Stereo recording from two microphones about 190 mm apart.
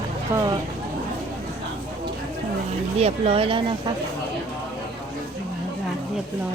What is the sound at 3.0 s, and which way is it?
Speech, 30° right (ahead or behind).